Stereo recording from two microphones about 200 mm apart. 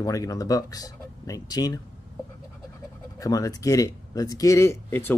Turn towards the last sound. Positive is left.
turn(degrees=10)  # may be behind; listen again after turning